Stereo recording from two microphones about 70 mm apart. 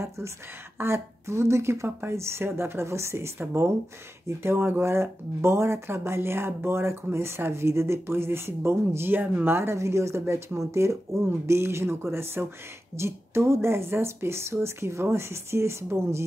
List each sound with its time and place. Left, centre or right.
0.7 s speech: right